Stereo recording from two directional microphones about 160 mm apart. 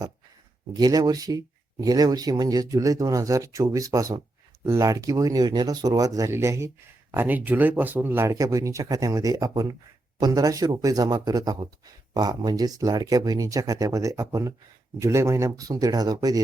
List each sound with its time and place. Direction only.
0.7 s speech: 25° right (ahead or behind)